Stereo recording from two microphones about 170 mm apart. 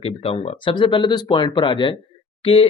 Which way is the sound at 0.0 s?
35° left (ahead or behind).